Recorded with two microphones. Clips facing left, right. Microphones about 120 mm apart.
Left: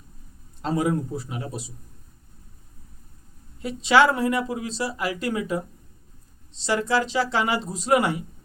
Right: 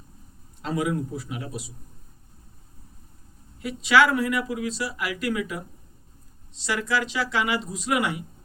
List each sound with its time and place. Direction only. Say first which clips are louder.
0.6 s speech: left 3 dB; 35° left (ahead or behind)
3.6 s speech: left 2 dB; 30° left (ahead or behind)